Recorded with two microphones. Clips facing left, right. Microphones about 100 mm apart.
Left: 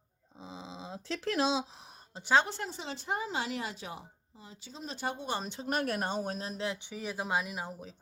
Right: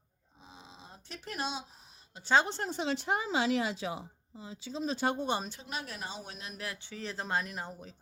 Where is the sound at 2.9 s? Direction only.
90° right.